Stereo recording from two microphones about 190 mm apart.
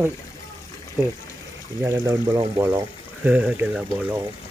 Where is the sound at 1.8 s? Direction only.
15° right (ahead or behind).